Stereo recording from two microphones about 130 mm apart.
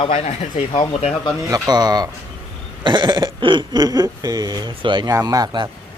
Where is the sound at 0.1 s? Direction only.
60° left (ahead or behind).